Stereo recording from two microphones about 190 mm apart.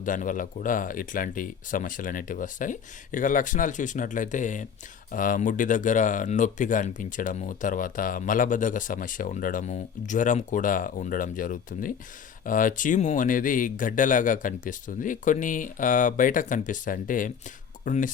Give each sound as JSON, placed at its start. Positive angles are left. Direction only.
{"t": 0.0, "sound": "speech", "side_deg": 45}